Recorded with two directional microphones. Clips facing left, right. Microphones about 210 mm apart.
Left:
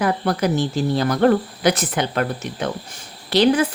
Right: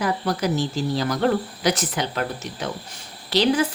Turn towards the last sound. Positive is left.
turn(degrees=55)  # may be behind; listen again after turning